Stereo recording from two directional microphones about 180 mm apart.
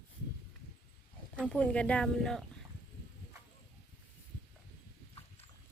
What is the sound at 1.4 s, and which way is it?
Speech, 5° left (ahead or behind).